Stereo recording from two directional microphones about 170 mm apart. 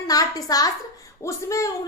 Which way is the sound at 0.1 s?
20° left (ahead or behind).